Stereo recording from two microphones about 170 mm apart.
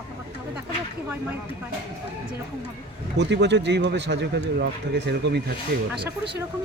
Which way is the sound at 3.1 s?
90° right.